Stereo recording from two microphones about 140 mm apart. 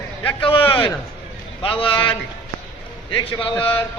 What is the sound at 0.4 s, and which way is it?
A man's voice, 40° left (ahead or behind).